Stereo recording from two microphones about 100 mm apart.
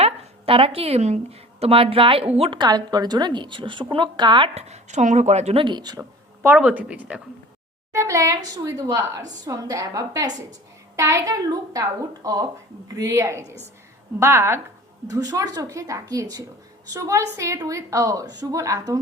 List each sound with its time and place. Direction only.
0.0 s a woman's voice: 70° right (ahead or behind)
2.5 s a woman's voice: 45° right (ahead or behind)
5.2 s speech: 90° right
5.6 s a woman's voice: 45° right (ahead or behind)
6.6 s speech: 10° right (ahead or behind)
7.9 s a woman's voice: 30° right (ahead or behind)
15.0 s a woman's voice: 40° right (ahead or behind)